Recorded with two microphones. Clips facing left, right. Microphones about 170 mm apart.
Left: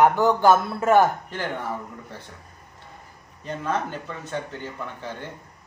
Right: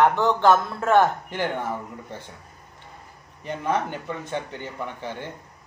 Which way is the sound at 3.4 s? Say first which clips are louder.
Right 2 dB; 15° right (ahead or behind).